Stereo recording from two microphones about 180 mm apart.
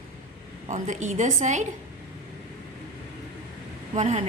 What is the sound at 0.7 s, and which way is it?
Speech, 40° right (ahead or behind).